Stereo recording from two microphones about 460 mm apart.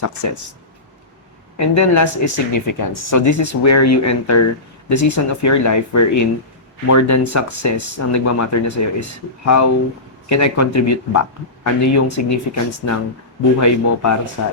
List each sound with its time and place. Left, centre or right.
1.5 s speech: left